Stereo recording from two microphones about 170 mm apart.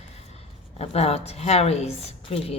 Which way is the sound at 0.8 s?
35° left (ahead or behind).